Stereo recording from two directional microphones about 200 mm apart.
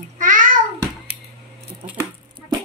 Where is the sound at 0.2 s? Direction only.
40° right (ahead or behind).